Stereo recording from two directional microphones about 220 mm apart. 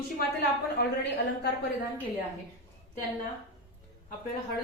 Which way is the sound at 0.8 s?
45° left (ahead or behind).